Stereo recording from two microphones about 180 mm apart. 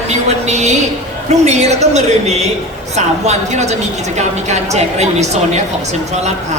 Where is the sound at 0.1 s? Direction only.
40° right (ahead or behind).